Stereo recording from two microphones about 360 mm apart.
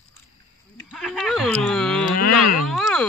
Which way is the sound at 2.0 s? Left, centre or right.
Left.